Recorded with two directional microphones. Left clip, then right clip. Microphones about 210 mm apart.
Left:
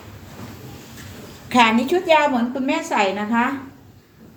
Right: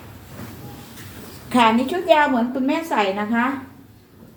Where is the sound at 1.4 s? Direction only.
15° left (ahead or behind).